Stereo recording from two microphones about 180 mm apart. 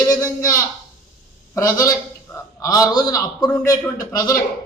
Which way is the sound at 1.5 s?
20° left (ahead or behind).